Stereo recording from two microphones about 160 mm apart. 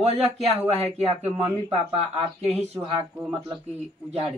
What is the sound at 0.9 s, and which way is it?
Speech, 40° right (ahead or behind).